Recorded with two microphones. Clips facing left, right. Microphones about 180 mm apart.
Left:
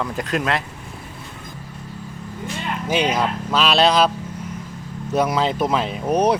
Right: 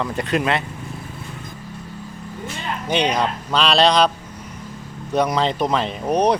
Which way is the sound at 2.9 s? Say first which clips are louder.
Even; 5° left (ahead or behind).